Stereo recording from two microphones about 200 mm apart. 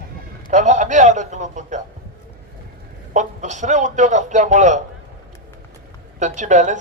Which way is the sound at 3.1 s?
35° right (ahead or behind).